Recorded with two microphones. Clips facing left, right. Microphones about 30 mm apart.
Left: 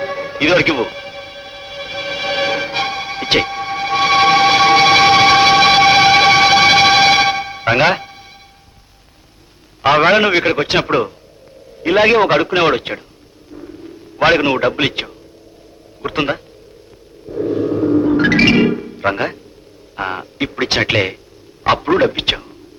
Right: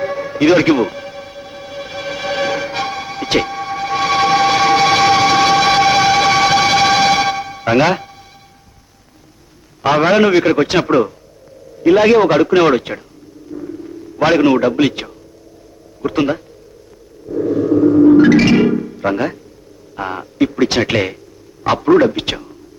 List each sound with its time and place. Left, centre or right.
0.0 s music: left
9.8 s a man's voice: left
13.5 s rumble: centre
14.2 s a man's voice: left
17.5 s a sound: left
18.2 s music: left
18.9 s a man's voice: left